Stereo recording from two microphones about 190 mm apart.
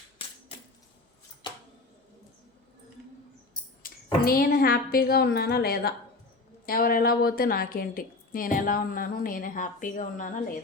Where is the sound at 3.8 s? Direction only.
50° left (ahead or behind).